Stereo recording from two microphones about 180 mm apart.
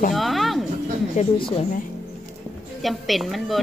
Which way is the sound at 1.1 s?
30° left (ahead or behind).